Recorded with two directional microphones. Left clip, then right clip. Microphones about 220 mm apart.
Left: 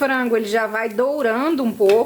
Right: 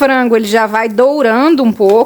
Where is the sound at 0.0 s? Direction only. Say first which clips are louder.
Right 9 dB; 45° right (ahead or behind).